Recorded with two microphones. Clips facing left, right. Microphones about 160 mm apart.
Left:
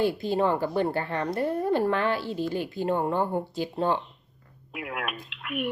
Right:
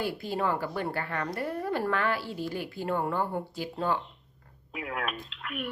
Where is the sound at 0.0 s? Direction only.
25° left (ahead or behind).